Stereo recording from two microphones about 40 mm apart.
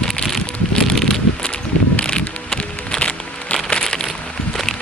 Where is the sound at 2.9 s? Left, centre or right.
Left.